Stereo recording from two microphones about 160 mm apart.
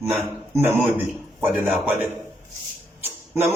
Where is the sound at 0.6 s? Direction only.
10° right (ahead or behind).